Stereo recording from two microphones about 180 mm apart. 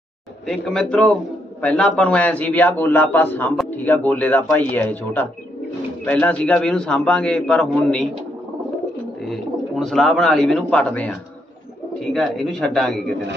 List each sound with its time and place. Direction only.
0.5 s a man's voice: 5° left (ahead or behind)
9.2 s a man's voice: centre (ahead or behind)